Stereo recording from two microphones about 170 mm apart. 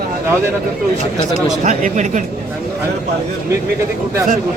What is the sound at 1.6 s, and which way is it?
Speech, 45° right (ahead or behind).